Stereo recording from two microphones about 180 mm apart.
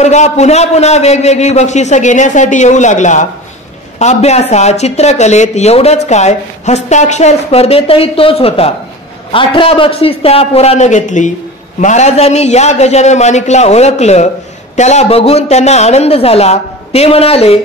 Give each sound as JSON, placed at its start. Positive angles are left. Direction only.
{"t": 0.0, "sound": "speech", "side_deg": 40}